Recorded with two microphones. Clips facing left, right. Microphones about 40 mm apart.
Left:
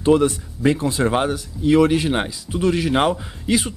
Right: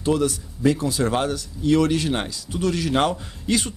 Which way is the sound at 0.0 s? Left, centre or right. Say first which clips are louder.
Left 5 dB; left.